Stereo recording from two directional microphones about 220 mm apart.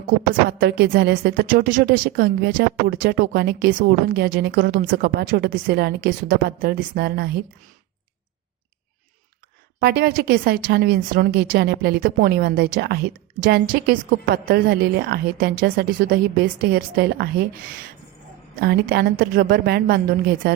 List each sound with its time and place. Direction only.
0.6 s a woman's voice: 50° right (ahead or behind)
9.8 s a woman's voice: 45° right (ahead or behind)
18.6 s a woman's voice: 45° right (ahead or behind)